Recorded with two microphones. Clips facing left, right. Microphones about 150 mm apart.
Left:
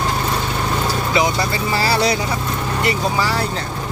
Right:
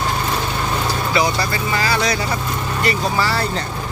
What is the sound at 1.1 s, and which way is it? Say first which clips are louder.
Speech: even; 20° left (ahead or behind).